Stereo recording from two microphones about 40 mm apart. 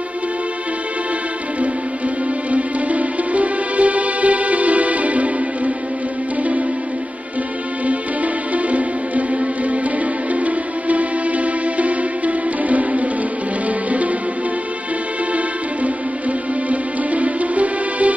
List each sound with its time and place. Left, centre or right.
2.5 s music: right
7.8 s music: right
15.3 s music: right